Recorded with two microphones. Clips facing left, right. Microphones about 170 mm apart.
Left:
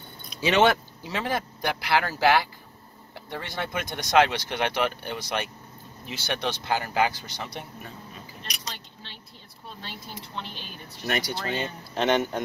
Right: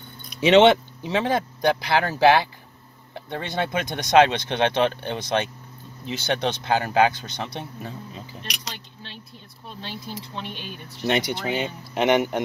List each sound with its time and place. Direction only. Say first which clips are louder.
0.4 s speech: right 6 dB; 25° right (ahead or behind)
10.3 s speech: right 4 dB; 15° right (ahead or behind)